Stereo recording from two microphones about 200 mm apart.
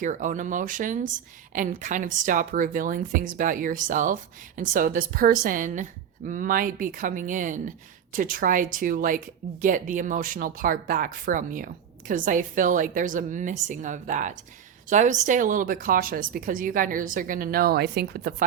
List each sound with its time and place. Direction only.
0.0 s speech: 40° right (ahead or behind)